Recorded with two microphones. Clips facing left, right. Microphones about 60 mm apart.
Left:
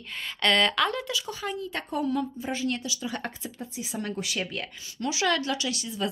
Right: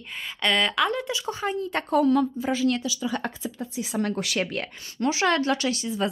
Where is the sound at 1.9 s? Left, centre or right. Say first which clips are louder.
Right 8 dB; right.